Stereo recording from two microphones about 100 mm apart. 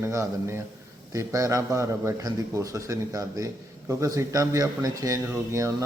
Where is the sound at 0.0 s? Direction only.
30° right (ahead or behind).